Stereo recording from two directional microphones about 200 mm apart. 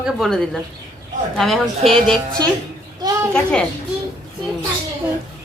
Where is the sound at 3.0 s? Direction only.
20° right (ahead or behind).